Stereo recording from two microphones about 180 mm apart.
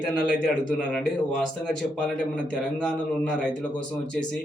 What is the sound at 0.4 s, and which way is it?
A man's voice, 5° left (ahead or behind).